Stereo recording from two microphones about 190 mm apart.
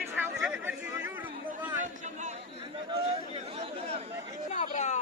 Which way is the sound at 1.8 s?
40° right (ahead or behind).